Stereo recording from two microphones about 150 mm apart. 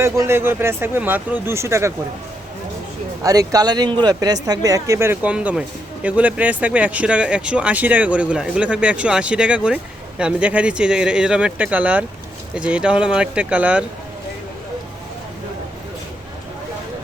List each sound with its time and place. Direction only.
0.0 s speech: 20° right (ahead or behind)
3.2 s speech: 25° right (ahead or behind)